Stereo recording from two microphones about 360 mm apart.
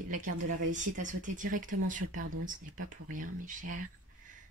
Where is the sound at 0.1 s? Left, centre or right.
Right.